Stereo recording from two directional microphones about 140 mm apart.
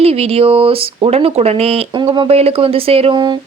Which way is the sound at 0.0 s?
45° right (ahead or behind).